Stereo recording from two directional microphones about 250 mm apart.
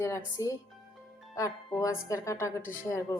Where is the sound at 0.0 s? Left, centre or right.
Centre.